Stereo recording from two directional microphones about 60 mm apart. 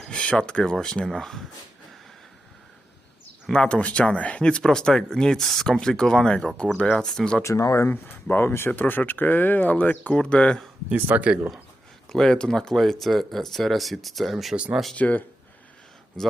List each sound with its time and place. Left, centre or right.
0.1 s speech: centre
3.5 s speech: centre
7.4 s speech: left
7.9 s speech: left; by 10.6 s centre
10.9 s speech: right
12.0 s speech: centre
14.5 s speech: centre
14.9 s speech: left
16.2 s speech: centre